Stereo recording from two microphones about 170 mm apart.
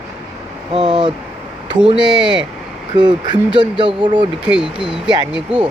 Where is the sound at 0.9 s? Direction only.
25° right (ahead or behind).